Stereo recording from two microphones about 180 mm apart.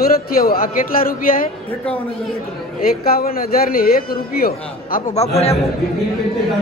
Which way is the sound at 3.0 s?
55° left (ahead or behind).